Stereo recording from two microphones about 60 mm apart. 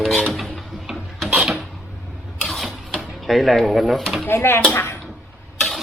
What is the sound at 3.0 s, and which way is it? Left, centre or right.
Speech, centre.